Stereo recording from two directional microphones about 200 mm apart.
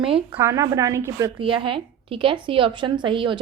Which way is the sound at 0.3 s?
15° right (ahead or behind).